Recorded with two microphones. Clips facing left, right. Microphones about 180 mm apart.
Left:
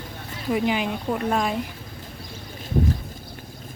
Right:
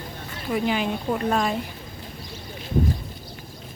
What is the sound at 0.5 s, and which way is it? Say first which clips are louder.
Speech: even; 15° left (ahead or behind).